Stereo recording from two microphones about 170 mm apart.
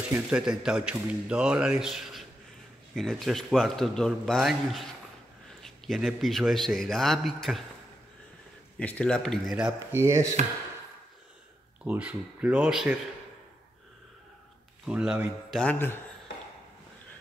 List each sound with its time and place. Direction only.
0.1 s speech: 5° right (ahead or behind)
8.7 s speech: 10° left (ahead or behind)
9.8 s speech: 15° right (ahead or behind)
11.8 s speech: 10° right (ahead or behind)
14.9 s speech: 5° right (ahead or behind)
15.6 s speech: 10° left (ahead or behind)